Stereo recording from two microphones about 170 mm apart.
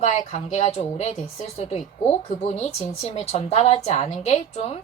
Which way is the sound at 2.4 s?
35° left (ahead or behind).